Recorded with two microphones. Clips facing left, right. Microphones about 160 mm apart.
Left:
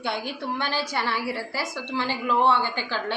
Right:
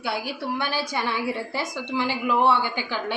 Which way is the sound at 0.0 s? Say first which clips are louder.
Right 1 dB; 5° right (ahead or behind).